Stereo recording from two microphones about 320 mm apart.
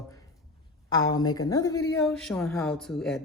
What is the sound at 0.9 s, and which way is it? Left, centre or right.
A woman's voice, centre.